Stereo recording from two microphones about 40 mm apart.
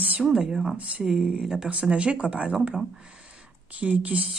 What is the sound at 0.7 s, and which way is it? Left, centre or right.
A woman's voice, right.